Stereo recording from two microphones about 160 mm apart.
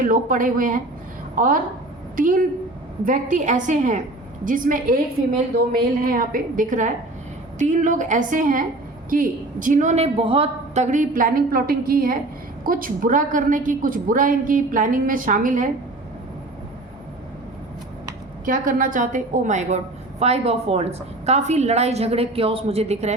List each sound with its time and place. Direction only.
0.0 s a woman's voice: 55° right (ahead or behind)
6.0 s a woman's voice: 65° right (ahead or behind); by 10.8 s 35° right (ahead or behind)
10.9 s a woman's voice: 55° right (ahead or behind)
18.4 s a woman's voice: 60° right (ahead or behind); by 23.1 s 45° right (ahead or behind)